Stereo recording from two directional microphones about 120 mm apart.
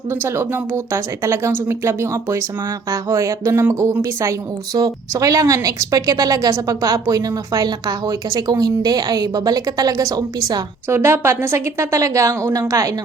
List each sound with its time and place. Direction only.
0.1 s speech: 20° right (ahead or behind)